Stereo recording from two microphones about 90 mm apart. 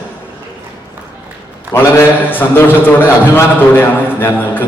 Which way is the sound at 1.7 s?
20° left (ahead or behind).